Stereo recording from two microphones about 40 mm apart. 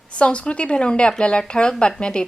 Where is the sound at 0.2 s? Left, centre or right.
Left.